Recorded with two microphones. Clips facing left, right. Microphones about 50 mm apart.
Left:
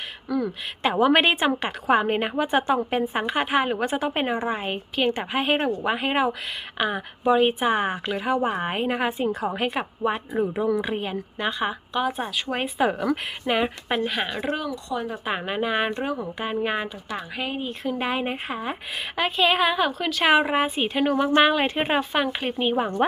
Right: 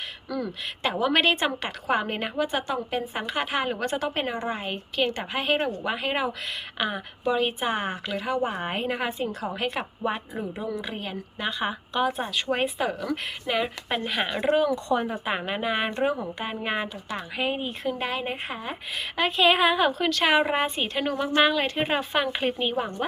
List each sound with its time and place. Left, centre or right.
0.3 s a woman's voice: centre
10.1 s speech: left; by 12.7 s centre
12.8 s speech: left
13.9 s speech: centre
17.9 s a woman's voice: centre
20.1 s a woman's voice: centre